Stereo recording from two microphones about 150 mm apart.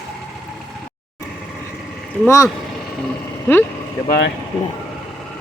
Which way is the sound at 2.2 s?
20° left (ahead or behind).